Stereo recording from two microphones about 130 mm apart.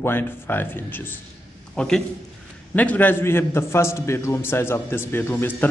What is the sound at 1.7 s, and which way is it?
A man's voice, 5° left (ahead or behind).